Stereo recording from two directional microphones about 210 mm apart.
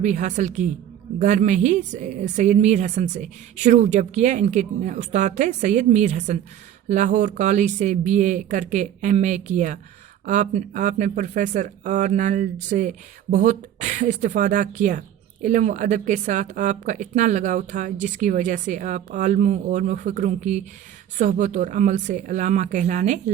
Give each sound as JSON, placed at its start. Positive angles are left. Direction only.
{"t": 0.0, "sound": "speech", "side_deg": -35}